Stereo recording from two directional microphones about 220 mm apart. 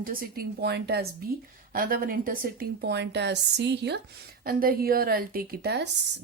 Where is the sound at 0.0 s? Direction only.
40° right (ahead or behind).